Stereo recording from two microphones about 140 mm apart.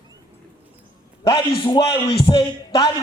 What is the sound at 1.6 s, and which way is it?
Speech, 35° left (ahead or behind).